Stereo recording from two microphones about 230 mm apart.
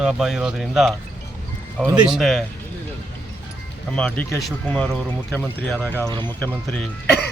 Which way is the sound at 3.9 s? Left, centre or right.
Centre.